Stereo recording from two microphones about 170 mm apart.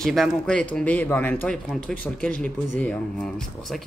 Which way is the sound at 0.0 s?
Centre (ahead or behind).